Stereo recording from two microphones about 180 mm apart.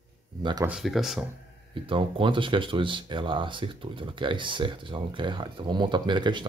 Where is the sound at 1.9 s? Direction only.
30° right (ahead or behind).